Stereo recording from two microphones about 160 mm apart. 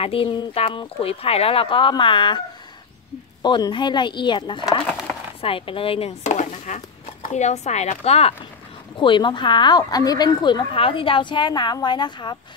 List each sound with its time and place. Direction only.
0.0 s speech: 35° left (ahead or behind)
3.4 s speech: 30° left (ahead or behind)